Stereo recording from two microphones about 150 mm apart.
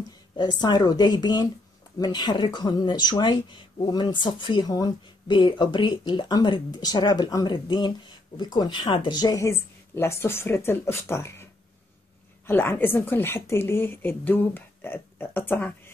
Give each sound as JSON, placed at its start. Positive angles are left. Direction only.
{"t": 0.4, "sound": "speech", "side_deg": 30}
{"t": 12.4, "sound": "speech", "side_deg": 15}